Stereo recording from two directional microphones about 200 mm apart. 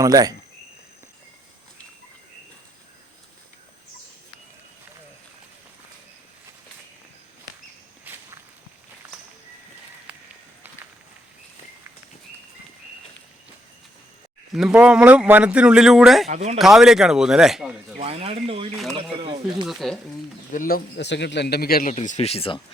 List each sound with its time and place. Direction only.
0.0 s speech: 20° right (ahead or behind)
8.1 s walk: 10° right (ahead or behind)
14.5 s speech: 5° right (ahead or behind)
16.3 s speech: 35° right (ahead or behind)
16.6 s speech: centre (ahead or behind)
18.0 s speech: 30° right (ahead or behind)
19.6 s speech: centre (ahead or behind)
20.5 s a man's voice: 45° left (ahead or behind); by 22.6 s 30° left (ahead or behind)